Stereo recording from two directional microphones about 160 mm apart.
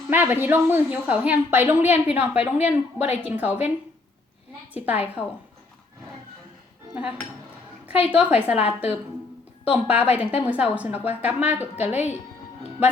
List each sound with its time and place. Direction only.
0.1 s a woman's voice: 10° right (ahead or behind)
4.7 s a woman's voice: 10° right (ahead or behind)
8.1 s a woman's voice: 10° right (ahead or behind)
11.9 s speech: 45° left (ahead or behind)